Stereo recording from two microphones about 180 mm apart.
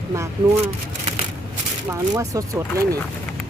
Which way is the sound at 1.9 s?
15° right (ahead or behind).